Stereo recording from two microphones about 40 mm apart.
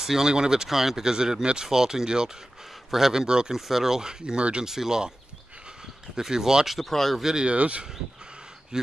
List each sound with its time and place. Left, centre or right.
0.0 s speech: centre
4.6 s speech: centre
6.1 s speech: centre
6.9 s speech: centre
7.2 s speech: centre
7.4 s speech: right
8.7 s speech: centre